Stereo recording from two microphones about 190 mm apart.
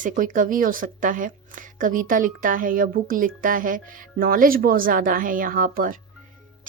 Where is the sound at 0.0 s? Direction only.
45° right (ahead or behind).